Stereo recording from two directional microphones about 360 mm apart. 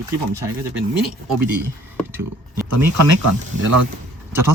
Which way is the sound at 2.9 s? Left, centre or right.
Right.